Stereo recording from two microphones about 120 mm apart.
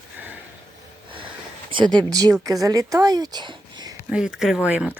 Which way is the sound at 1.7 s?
40° right (ahead or behind).